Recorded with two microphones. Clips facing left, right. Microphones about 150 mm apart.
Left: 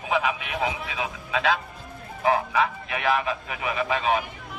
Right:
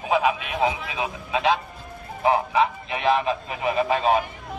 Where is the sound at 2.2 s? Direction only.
25° right (ahead or behind).